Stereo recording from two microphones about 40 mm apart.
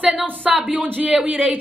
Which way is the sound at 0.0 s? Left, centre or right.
Right.